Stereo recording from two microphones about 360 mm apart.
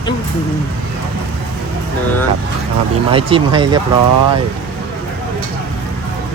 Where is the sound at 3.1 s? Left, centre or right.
Centre.